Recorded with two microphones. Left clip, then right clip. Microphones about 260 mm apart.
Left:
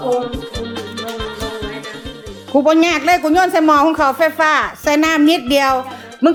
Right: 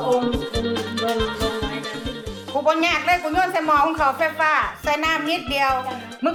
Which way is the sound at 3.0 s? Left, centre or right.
Left.